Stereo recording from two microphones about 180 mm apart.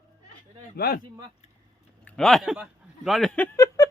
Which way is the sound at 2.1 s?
Centre (ahead or behind).